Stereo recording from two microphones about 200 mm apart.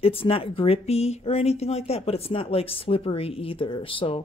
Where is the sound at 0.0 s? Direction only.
30° left (ahead or behind).